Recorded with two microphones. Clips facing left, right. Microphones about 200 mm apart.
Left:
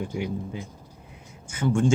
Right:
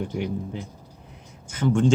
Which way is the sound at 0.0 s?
10° left (ahead or behind).